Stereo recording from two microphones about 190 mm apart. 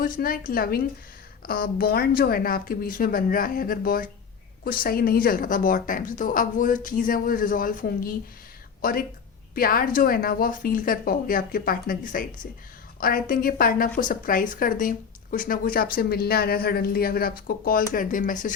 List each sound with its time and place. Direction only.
0.0 s a woman's voice: 50° left (ahead or behind)